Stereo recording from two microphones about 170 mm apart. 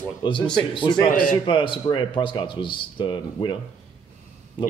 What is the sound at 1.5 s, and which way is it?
Speech, 30° left (ahead or behind).